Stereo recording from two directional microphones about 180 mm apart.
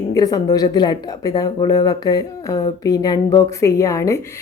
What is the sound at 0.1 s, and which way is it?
A woman's voice, 20° left (ahead or behind).